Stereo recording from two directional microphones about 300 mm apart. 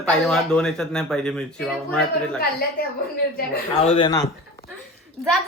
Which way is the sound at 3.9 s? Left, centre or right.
Centre.